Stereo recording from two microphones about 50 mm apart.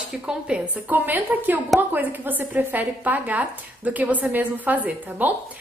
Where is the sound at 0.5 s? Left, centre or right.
Right.